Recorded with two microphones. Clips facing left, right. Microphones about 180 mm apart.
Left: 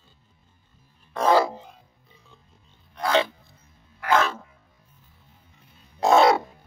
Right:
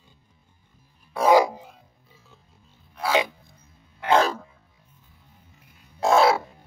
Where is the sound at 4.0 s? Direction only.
30° right (ahead or behind).